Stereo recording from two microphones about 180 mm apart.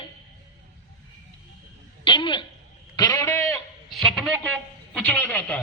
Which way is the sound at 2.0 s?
25° left (ahead or behind).